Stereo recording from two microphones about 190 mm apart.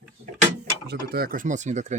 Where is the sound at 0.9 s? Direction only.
55° right (ahead or behind).